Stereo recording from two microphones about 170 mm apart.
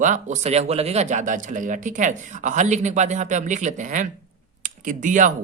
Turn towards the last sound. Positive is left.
turn(degrees=-50)  # may be behind; listen again after turning